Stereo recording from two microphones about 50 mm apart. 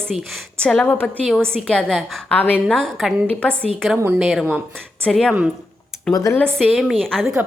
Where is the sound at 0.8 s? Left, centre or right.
Left.